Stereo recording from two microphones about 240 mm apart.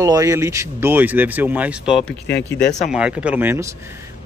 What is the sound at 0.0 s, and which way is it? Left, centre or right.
Speech, centre.